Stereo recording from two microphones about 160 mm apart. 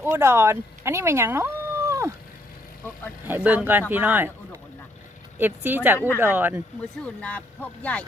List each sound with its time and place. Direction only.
0.0 s speech: 15° right (ahead or behind)
3.2 s speech: 10° right (ahead or behind)
5.4 s speech: 10° right (ahead or behind)
7.0 s speech: 10° left (ahead or behind)